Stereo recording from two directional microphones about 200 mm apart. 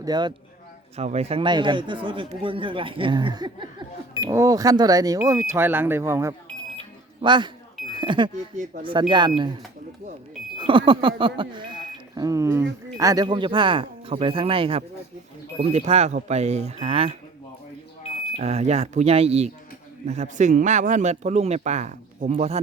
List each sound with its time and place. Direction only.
0.0 s speech: 20° right (ahead or behind)
0.9 s speech: 30° right (ahead or behind)
10.6 s speech: 25° right (ahead or behind)
18.3 s speech: 35° right (ahead or behind)